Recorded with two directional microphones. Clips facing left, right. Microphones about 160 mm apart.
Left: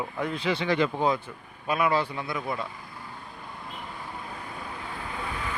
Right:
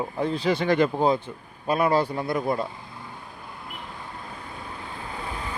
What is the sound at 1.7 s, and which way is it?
A man's voice, 35° right (ahead or behind).